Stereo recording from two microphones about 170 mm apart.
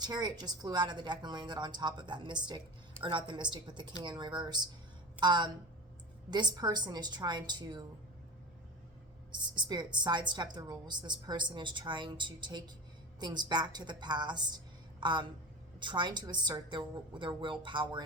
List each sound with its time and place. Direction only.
0.0 s a woman's voice: 25° right (ahead or behind)
9.6 s a woman's voice: 25° right (ahead or behind)